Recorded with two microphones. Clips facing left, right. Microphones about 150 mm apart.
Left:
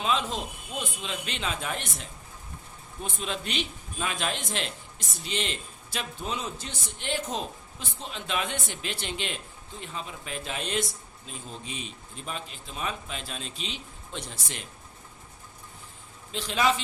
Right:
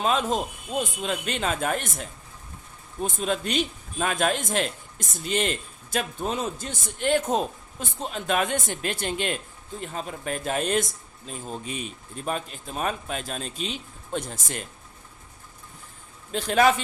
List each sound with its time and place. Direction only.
0.0 s a man's voice: 45° right (ahead or behind)
16.3 s a man's voice: 50° right (ahead or behind)